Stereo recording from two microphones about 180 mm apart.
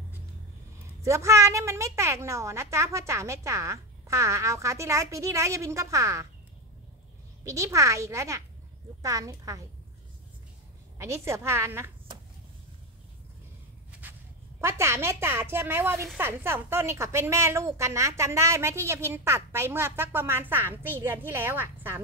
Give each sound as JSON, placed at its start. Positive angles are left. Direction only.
{"t": 1.0, "sound": "a woman's voice", "side_deg": -15}
{"t": 7.4, "sound": "a woman's voice", "side_deg": -15}
{"t": 11.0, "sound": "a woman's voice", "side_deg": -15}
{"t": 14.0, "sound": "a sound", "side_deg": -10}
{"t": 14.6, "sound": "a woman's voice", "side_deg": -15}